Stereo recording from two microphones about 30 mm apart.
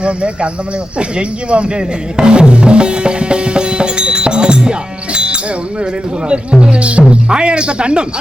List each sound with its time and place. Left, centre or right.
0.0 s speech: right